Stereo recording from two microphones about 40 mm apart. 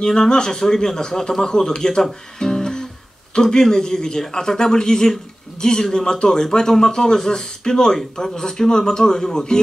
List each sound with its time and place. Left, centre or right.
0.0 s speech: centre